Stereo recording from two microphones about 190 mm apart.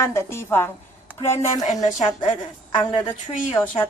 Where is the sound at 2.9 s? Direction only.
25° left (ahead or behind).